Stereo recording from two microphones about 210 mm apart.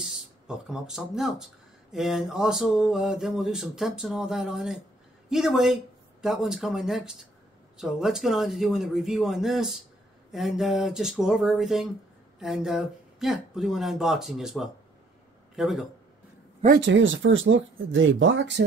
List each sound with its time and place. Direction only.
0.0 s speech: 5° right (ahead or behind)
16.8 s speech: 65° right (ahead or behind)